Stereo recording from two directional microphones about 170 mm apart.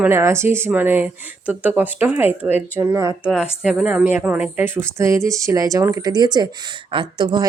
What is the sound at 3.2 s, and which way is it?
A woman's voice, 5° right (ahead or behind).